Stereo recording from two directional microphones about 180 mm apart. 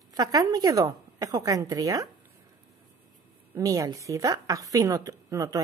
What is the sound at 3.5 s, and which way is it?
A woman's voice, 20° right (ahead or behind).